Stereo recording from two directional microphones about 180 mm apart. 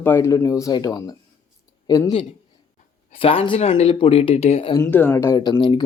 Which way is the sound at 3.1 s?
30° left (ahead or behind).